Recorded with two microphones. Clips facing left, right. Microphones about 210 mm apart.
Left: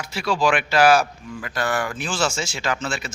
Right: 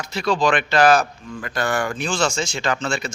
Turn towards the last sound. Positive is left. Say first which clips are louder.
# right 3 dB
turn(degrees=5)  # may be behind; listen again after turning